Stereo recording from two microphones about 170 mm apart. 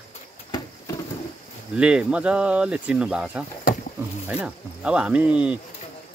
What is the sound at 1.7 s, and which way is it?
Speech, 5° right (ahead or behind).